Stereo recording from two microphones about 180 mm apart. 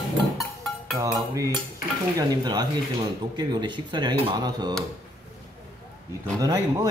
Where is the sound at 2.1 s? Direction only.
20° right (ahead or behind).